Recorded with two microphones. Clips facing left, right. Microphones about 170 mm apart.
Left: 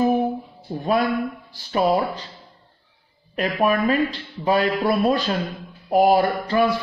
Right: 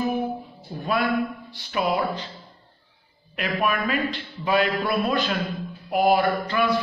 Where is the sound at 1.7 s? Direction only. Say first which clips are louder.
Left 4 dB; 35° left (ahead or behind).